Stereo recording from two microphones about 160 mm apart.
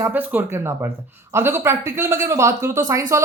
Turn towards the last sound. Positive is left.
turn(degrees=-15)  # may be behind; listen again after turning